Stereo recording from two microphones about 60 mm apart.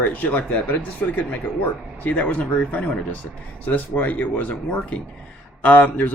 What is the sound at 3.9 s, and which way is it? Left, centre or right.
Speech, left.